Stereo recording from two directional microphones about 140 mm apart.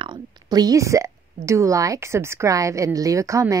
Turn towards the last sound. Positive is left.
turn(degrees=-20)  # may be behind; listen again after turning